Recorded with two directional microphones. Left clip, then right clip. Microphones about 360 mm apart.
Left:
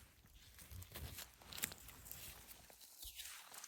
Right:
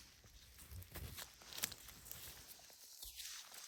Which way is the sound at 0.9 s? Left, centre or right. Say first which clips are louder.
Right 1 dB; centre.